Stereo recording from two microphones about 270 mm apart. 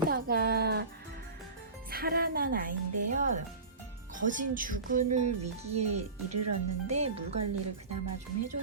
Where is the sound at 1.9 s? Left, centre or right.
Right.